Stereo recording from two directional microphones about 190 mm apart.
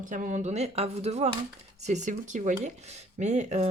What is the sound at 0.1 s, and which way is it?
Speech, 40° right (ahead or behind).